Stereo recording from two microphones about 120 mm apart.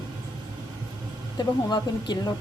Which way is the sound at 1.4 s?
35° left (ahead or behind).